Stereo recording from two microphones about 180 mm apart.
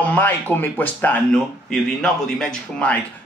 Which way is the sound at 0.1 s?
10° left (ahead or behind).